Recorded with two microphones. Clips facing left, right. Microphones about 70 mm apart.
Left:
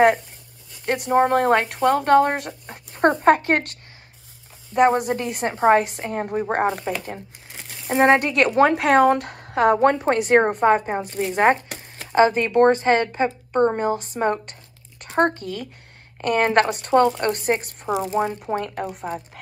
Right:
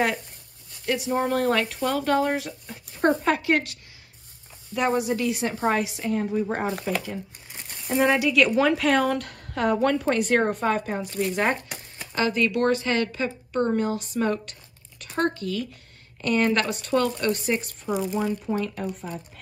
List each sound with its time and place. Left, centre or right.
0.8 s speech: left
4.9 s speech: left
7.8 s speech: left
11.3 s shuffling cards: left
12.2 s speech: left